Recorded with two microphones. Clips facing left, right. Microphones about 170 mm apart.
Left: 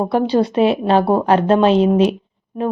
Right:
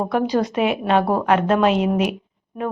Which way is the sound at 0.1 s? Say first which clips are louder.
Left 4 dB; 30° left (ahead or behind).